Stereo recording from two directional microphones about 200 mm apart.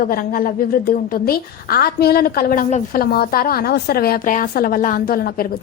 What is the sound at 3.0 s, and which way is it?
A woman's voice, 50° left (ahead or behind).